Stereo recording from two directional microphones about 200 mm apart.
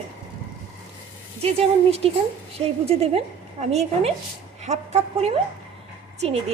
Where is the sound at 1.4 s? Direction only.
30° right (ahead or behind).